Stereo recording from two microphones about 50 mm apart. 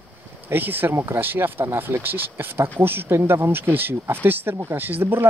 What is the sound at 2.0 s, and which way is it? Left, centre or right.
Speech, right.